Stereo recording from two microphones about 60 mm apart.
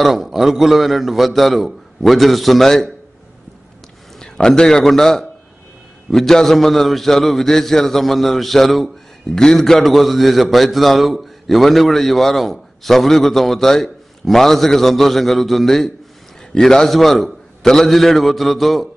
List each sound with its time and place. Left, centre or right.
0.0 s a man's voice: centre
4.2 s a man's voice: centre